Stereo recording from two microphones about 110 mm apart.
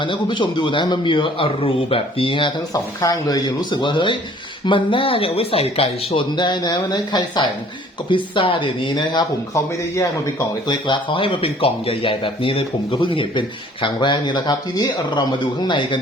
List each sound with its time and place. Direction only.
0.0 s speech: 45° left (ahead or behind)
3.0 s speech: 35° left (ahead or behind); by 6.2 s 60° left (ahead or behind)
6.3 s speech: 45° left (ahead or behind)
9.6 s speech: 30° left (ahead or behind)
10.7 s speech: 45° left (ahead or behind)